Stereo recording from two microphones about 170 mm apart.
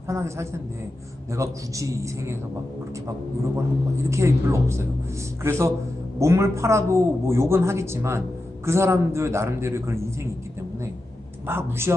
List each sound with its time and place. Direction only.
0.1 s a man's voice: 15° right (ahead or behind)
4.1 s a man's voice: 15° right (ahead or behind)
11.4 s a man's voice: 15° right (ahead or behind)